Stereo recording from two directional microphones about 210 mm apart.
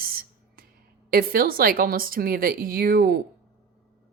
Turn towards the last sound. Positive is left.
turn(degrees=-45)  # may be behind; listen again after turning